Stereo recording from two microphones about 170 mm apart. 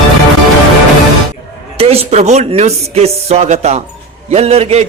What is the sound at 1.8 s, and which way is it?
A man's voice, 35° right (ahead or behind).